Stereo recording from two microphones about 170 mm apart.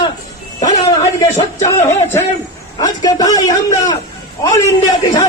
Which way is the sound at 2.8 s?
20° left (ahead or behind).